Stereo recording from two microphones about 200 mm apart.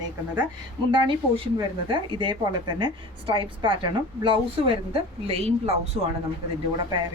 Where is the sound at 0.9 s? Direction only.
25° right (ahead or behind).